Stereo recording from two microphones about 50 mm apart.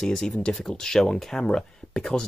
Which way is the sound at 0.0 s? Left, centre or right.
Centre.